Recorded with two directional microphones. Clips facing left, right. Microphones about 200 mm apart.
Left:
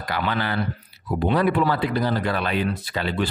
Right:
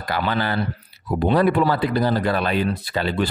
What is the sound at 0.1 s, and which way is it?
Speech, 35° right (ahead or behind).